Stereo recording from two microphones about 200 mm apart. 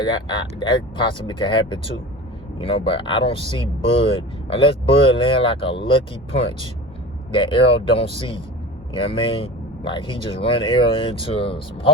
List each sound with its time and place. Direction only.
0.0 s speech: 20° left (ahead or behind)